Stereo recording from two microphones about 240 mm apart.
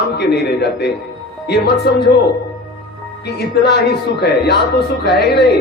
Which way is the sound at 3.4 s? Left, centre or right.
Left.